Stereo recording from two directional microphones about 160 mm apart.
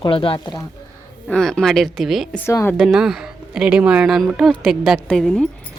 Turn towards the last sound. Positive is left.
turn(degrees=5)  # may be behind; listen again after turning